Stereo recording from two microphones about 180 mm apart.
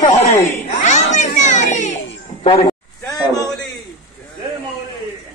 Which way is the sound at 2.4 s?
30° left (ahead or behind).